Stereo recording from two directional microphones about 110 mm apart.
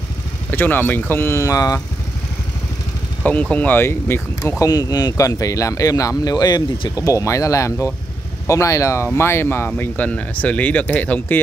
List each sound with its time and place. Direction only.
0.5 s speech: 15° left (ahead or behind); by 1.8 s 30° left (ahead or behind)
3.3 s speech: 15° left (ahead or behind)
4.6 s speech: 35° left (ahead or behind); by 11.4 s 15° left (ahead or behind)